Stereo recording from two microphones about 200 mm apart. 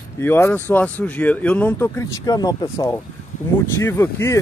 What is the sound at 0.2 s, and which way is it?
Speech, 10° left (ahead or behind).